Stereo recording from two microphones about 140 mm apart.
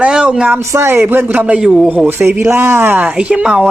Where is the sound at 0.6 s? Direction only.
20° right (ahead or behind); by 1.9 s centre (ahead or behind).